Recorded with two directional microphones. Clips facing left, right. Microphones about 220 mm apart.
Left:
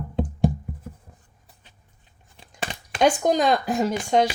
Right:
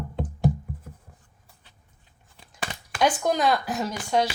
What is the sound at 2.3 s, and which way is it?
A woman's voice, 20° left (ahead or behind).